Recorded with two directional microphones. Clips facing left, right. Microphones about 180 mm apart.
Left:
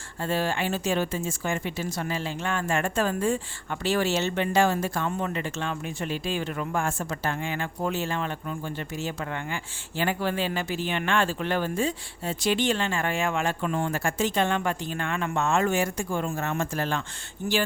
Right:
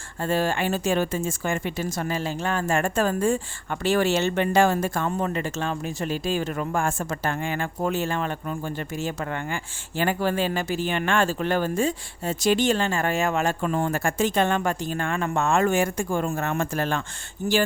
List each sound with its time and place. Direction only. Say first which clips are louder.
0.2 s a woman's voice: right 3 dB; 45° right (ahead or behind)